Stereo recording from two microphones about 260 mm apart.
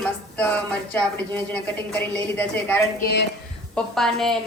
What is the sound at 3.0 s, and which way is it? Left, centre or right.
Speech, left.